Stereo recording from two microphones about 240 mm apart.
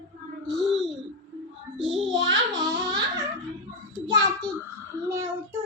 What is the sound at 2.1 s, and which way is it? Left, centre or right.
Speech, right.